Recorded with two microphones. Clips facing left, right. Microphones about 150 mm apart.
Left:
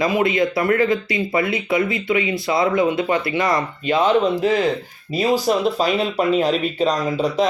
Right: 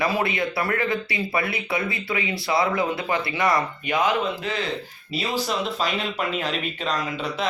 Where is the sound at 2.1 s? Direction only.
25° left (ahead or behind).